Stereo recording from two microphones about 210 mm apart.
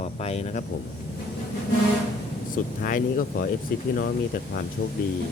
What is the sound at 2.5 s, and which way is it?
Speech, 40° left (ahead or behind).